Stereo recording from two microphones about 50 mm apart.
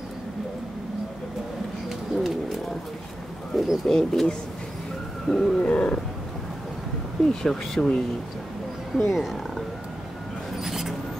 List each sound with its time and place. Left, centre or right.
1.9 s bird: centre
3.5 s speech: centre
3.8 s speech: centre
5.6 s a sound: left
7.2 s speech: centre
8.9 s speech: centre
10.6 s mouse: centre